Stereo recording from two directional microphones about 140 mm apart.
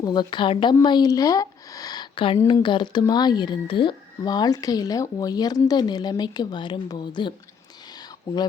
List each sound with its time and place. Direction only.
0.0 s speech: 30° left (ahead or behind)